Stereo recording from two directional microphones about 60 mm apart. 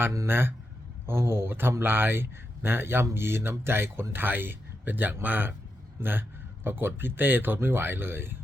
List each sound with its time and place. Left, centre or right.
0.3 s speech: right